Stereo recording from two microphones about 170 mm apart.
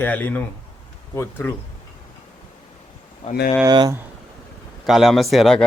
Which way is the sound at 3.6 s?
25° right (ahead or behind).